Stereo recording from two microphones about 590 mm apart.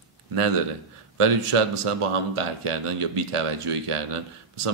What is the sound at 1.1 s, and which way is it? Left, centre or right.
A man's voice, right.